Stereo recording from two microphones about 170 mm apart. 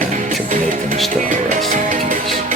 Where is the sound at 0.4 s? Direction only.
50° right (ahead or behind).